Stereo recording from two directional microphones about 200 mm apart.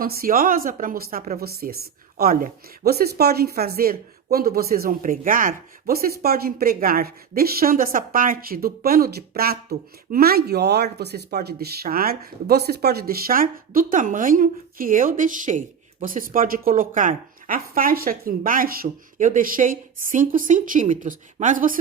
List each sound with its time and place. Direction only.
0.0 s speech: 45° right (ahead or behind)